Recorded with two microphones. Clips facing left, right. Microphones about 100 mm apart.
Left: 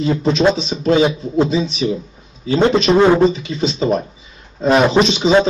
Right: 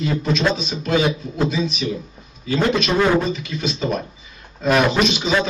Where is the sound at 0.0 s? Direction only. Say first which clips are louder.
Left 6 dB; 30° left (ahead or behind).